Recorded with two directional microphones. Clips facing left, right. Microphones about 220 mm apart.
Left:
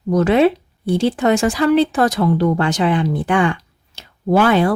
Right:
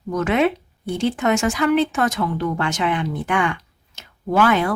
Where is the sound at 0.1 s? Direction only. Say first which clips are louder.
Left 6 dB; 35° left (ahead or behind).